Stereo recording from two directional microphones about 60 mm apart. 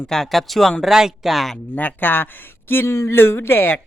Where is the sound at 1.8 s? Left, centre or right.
Left.